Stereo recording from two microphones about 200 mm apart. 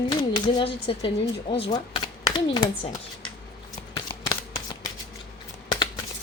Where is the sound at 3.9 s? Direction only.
20° left (ahead or behind).